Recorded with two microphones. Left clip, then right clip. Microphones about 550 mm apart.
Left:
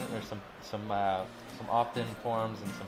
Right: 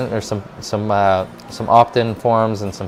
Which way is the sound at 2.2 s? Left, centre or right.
Right.